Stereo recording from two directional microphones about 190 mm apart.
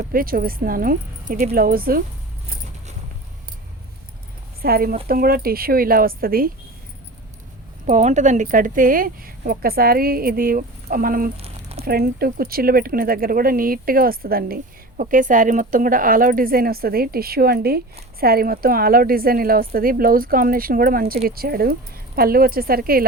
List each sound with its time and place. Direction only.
0.1 s speech: 50° right (ahead or behind)
4.6 s speech: 50° right (ahead or behind)
7.9 s speech: 40° right (ahead or behind)
11.3 s a sound: 30° right (ahead or behind)
11.9 s speech: 55° right (ahead or behind)